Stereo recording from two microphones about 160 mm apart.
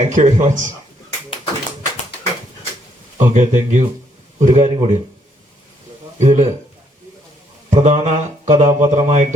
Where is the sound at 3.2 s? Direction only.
50° right (ahead or behind).